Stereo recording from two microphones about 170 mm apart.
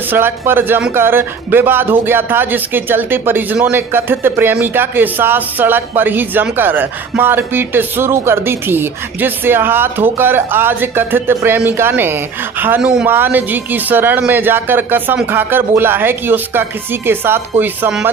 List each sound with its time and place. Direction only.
0.1 s speech: 15° right (ahead or behind)